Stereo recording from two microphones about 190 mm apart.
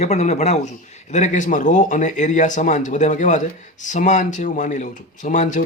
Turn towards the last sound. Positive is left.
turn(degrees=40)  # may be behind; listen again after turning